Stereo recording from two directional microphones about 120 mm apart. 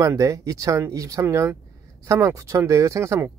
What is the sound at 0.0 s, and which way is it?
Speech, 25° right (ahead or behind).